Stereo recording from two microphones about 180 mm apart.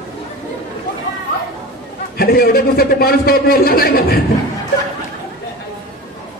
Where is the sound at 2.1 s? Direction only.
60° left (ahead or behind).